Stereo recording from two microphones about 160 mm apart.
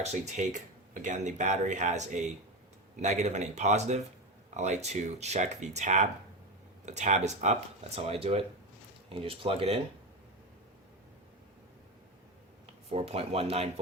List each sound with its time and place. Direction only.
0.0 s speech: 45° right (ahead or behind)
12.9 s speech: 40° right (ahead or behind)